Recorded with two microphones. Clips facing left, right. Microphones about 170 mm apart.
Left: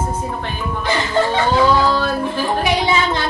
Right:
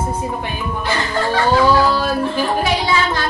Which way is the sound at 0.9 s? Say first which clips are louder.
Left 3 dB; 20° left (ahead or behind).